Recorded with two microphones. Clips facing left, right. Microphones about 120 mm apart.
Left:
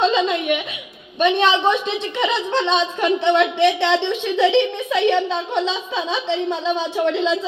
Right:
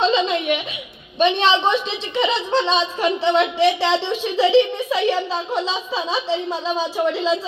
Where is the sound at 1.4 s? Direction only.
55° left (ahead or behind).